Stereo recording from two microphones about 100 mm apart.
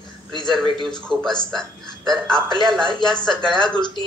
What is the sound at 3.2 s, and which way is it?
Speech, 5° left (ahead or behind).